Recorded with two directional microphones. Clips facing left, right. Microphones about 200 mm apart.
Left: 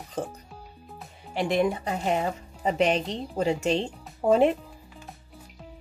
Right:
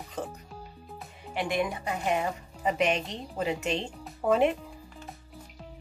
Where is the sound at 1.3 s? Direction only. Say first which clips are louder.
Left 5 dB; 30° left (ahead or behind).